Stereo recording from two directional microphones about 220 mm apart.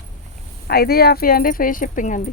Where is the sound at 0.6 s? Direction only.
45° left (ahead or behind).